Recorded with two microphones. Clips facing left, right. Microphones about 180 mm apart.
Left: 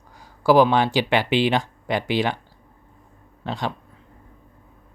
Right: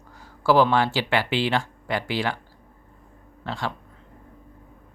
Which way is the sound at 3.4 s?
20° left (ahead or behind).